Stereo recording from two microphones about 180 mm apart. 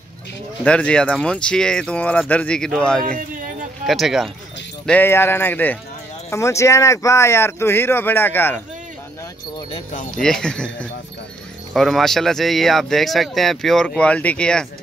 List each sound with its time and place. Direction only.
0.7 s speech: 5° left (ahead or behind)
3.0 s speech: 50° right (ahead or behind)
3.8 s speech: centre (ahead or behind)
4.8 s speech: 10° left (ahead or behind)
10.1 s speech: 5° left (ahead or behind)